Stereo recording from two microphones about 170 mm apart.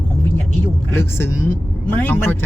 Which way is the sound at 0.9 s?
15° left (ahead or behind).